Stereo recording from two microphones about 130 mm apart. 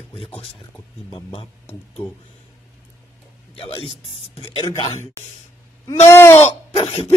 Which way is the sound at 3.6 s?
45° left (ahead or behind).